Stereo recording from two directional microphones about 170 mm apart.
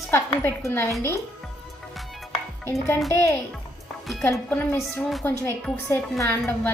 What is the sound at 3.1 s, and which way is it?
Speech, 15° left (ahead or behind).